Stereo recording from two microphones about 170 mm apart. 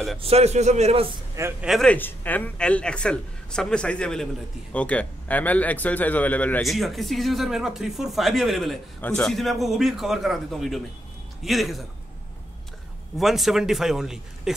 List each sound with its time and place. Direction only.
0.2 s a man's voice: 40° right (ahead or behind)
1.6 s a man's voice: centre (ahead or behind)
13.2 s a man's voice: centre (ahead or behind)